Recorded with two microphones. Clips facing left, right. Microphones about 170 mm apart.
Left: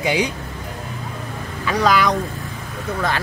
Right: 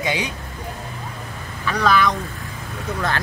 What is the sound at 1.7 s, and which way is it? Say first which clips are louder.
Speech: left 1 dB; 10° left (ahead or behind).